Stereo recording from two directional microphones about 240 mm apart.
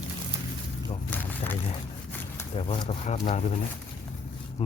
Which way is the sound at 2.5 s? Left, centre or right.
Left.